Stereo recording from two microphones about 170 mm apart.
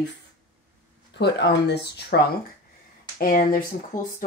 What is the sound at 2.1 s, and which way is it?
Speech, 65° left (ahead or behind).